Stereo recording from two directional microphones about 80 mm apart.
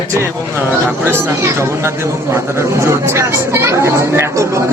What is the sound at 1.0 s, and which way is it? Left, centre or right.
Speech, right.